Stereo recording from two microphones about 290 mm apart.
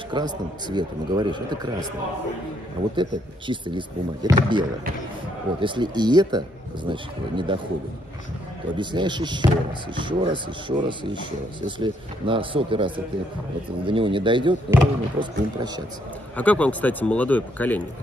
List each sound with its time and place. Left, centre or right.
0.1 s speech: centre
3.0 s speech: centre
8.7 s speech: centre
11.6 s speech: centre
16.3 s a man's voice: centre